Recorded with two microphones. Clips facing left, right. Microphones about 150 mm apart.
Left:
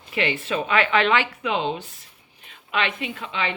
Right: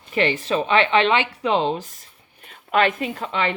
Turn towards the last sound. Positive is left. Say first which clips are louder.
# right 4 dB
turn(degrees=-45)  # may be behind; listen again after turning